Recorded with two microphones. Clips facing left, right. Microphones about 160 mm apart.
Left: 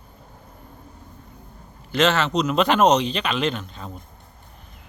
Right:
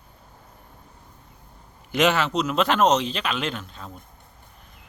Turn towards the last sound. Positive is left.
turn(degrees=0)  # may be behind; listen again after turning